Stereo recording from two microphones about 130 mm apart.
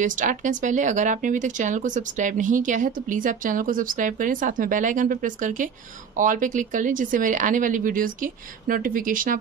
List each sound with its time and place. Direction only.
0.0 s speech: 80° right